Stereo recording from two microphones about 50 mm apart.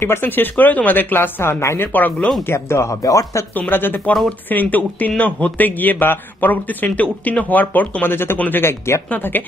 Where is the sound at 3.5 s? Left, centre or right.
Left.